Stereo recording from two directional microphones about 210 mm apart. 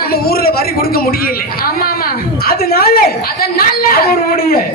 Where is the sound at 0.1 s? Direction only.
45° left (ahead or behind).